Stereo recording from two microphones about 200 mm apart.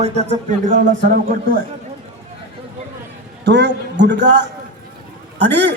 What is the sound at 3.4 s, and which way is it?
Speech, 60° right (ahead or behind).